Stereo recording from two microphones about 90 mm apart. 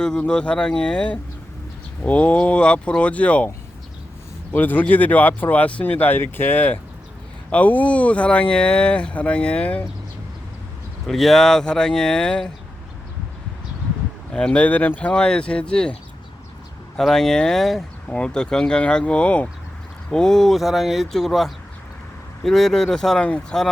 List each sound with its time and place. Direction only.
0.0 s speech: 10° left (ahead or behind)
4.5 s speech: 20° left (ahead or behind)
11.0 s speech: centre (ahead or behind)
14.3 s speech: 10° left (ahead or behind)
17.0 s speech: 5° left (ahead or behind)